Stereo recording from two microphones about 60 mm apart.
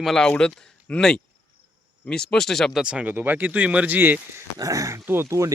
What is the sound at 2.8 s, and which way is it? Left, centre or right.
Speech, centre.